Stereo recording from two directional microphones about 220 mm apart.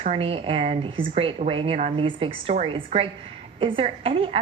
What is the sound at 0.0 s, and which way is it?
A woman's voice, 25° right (ahead or behind).